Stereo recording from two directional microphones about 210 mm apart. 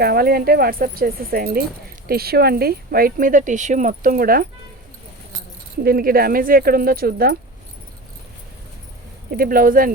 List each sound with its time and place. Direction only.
0.0 s speech: 45° right (ahead or behind)
5.8 s speech: 45° right (ahead or behind)
9.3 s speech: 45° right (ahead or behind)